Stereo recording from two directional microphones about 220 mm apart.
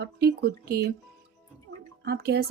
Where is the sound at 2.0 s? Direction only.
45° right (ahead or behind).